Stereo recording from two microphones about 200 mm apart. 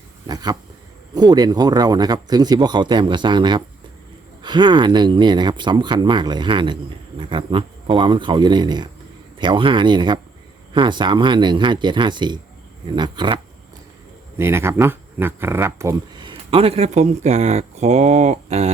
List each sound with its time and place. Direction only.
0.3 s speech: 20° right (ahead or behind)
14.3 s speech: 10° right (ahead or behind); by 18.7 s 30° right (ahead or behind)